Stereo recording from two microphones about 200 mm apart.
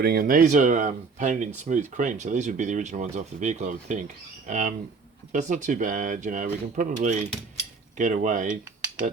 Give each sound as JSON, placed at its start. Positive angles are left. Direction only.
{"t": 0.0, "sound": "speech", "side_deg": -50}